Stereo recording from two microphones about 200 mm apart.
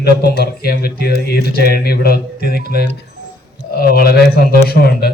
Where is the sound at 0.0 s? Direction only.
50° left (ahead or behind).